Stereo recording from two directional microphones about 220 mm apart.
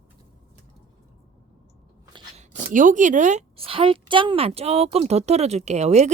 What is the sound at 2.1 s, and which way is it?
Speech, 30° right (ahead or behind).